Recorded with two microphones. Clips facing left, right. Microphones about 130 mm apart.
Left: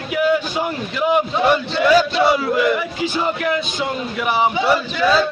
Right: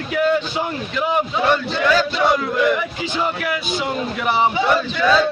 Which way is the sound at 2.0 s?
5° left (ahead or behind).